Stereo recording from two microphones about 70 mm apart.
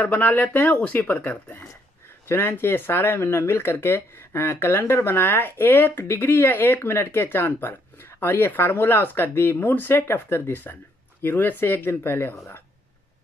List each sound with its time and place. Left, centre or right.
0.0 s speech: left